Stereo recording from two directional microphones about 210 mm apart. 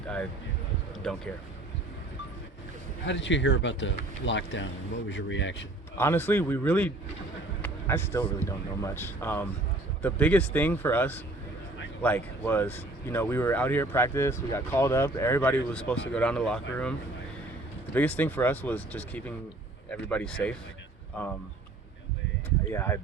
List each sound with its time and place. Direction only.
1.0 s speech: centre (ahead or behind)
3.0 s speech: 60° left (ahead or behind)
6.0 s speech: 10° left (ahead or behind)
7.6 s basketball bounce: 10° left (ahead or behind)
8.2 s speech: 15° left (ahead or behind)
17.9 s speech: 10° left (ahead or behind)
22.4 s speech: 10° left (ahead or behind)